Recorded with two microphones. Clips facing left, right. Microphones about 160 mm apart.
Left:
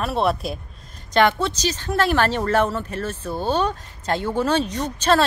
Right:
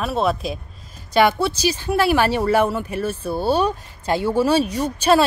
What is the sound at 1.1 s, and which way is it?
Speech, 10° right (ahead or behind).